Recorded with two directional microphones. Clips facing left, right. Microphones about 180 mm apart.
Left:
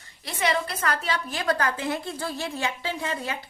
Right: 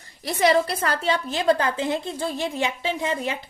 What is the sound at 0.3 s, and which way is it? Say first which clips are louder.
A woman's voice: right 7 dB; 35° right (ahead or behind).